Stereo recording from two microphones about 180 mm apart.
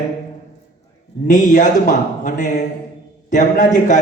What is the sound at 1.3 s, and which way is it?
A man's voice, 45° left (ahead or behind).